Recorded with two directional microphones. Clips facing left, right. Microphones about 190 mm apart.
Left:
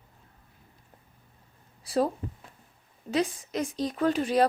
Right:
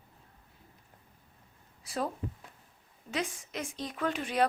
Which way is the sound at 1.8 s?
35° left (ahead or behind).